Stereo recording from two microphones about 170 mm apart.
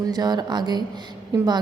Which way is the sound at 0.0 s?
25° right (ahead or behind).